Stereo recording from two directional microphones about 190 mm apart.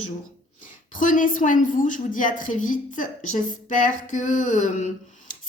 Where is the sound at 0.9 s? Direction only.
45° left (ahead or behind).